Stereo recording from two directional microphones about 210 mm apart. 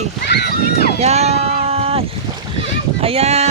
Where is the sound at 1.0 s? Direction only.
30° right (ahead or behind).